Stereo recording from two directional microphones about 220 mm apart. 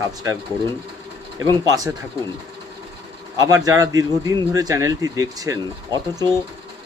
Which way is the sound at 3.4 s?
15° right (ahead or behind).